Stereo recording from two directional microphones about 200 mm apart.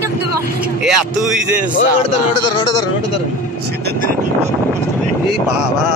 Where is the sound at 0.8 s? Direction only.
Centre (ahead or behind).